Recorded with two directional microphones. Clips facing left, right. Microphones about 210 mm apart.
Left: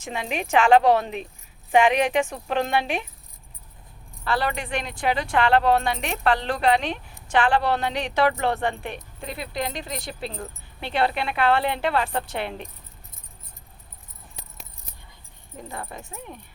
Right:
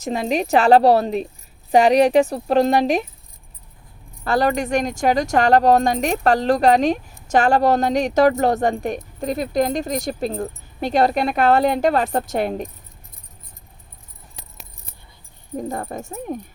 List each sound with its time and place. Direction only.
0.0 s speech: 40° right (ahead or behind)
4.2 s speech: 45° right (ahead or behind)
15.5 s speech: 45° right (ahead or behind)